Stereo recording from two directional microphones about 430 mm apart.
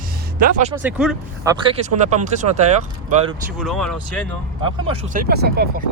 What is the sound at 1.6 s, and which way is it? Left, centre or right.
Speech, centre.